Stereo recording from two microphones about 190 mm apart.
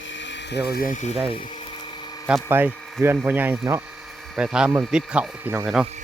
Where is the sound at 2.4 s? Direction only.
10° right (ahead or behind).